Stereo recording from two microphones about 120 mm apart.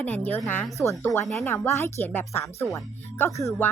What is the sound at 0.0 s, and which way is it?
A woman's voice, 15° left (ahead or behind).